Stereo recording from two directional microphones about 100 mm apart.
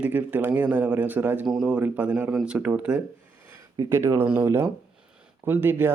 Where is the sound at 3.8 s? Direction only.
25° right (ahead or behind).